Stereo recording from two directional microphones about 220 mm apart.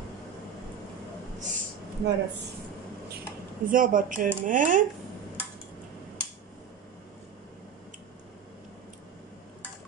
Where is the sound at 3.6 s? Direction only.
40° right (ahead or behind).